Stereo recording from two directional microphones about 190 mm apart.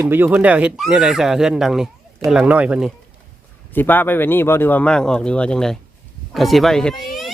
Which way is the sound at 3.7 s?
10° left (ahead or behind).